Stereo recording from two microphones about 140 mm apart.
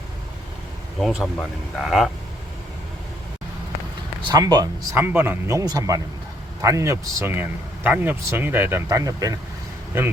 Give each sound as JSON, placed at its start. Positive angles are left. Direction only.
{"t": 1.0, "sound": "speech", "side_deg": 0}
{"t": 4.2, "sound": "speech", "side_deg": -30}
{"t": 4.9, "sound": "speech", "side_deg": -15}